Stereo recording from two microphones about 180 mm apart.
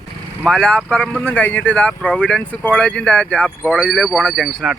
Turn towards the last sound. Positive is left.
turn(degrees=0)  # may be behind; listen again after turning